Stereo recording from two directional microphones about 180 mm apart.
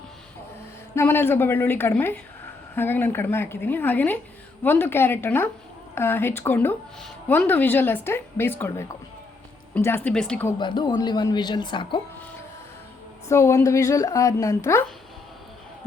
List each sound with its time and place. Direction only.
0.9 s speech: 10° left (ahead or behind)
10.6 s speech: 25° left (ahead or behind)
13.2 s speech: 15° left (ahead or behind)